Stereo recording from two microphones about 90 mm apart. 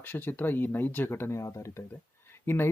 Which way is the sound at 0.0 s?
20° left (ahead or behind).